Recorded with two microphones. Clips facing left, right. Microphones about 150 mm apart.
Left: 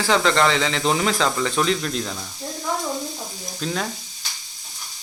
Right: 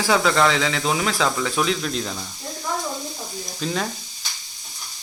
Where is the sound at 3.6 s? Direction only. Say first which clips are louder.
Right 1 dB; centre (ahead or behind).